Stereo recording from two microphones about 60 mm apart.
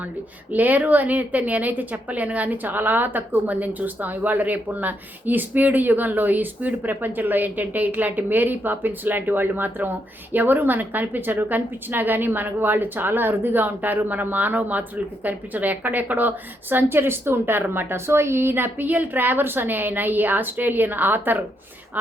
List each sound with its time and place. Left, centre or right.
0.5 s a woman's voice: right